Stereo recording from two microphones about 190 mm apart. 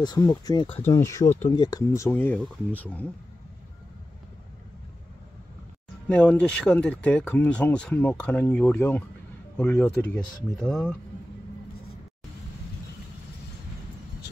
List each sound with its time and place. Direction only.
0.0 s speech: 20° left (ahead or behind)
6.0 s speech: 5° left (ahead or behind)
14.2 s a sound: 60° left (ahead or behind)